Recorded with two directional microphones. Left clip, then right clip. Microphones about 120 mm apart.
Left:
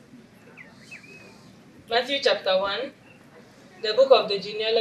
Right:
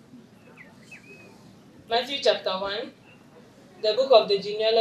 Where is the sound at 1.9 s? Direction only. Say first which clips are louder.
Left 1 dB; 15° right (ahead or behind).